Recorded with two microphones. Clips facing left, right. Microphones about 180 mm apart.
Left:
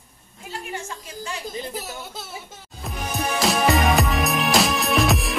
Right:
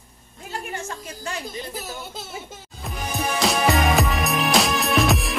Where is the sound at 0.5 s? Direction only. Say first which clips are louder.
Right 1 dB; 50° right (ahead or behind).